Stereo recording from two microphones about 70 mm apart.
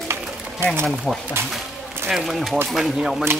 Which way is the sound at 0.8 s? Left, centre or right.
Centre.